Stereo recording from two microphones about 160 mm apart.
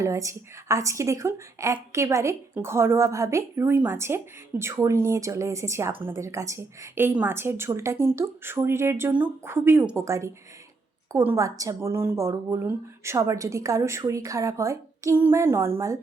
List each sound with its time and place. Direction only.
0.0 s a woman's voice: 20° right (ahead or behind)